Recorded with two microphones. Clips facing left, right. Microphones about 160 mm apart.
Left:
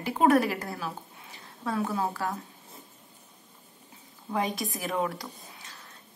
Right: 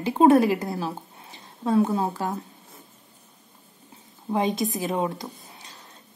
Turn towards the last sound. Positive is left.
turn(degrees=-20)  # may be behind; listen again after turning